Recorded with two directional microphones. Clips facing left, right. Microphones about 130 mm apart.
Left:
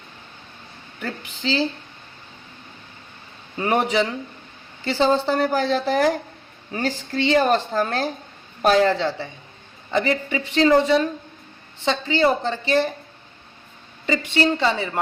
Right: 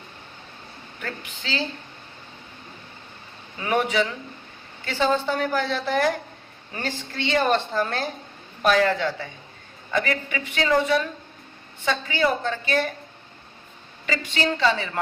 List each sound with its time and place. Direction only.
3.6 s a woman's voice: 35° left (ahead or behind)
14.1 s speech: 20° left (ahead or behind)